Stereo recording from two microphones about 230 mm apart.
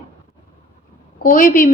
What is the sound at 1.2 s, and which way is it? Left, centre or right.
Speech, left.